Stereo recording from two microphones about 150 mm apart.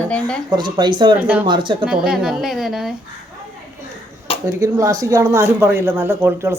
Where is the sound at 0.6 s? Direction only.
30° right (ahead or behind).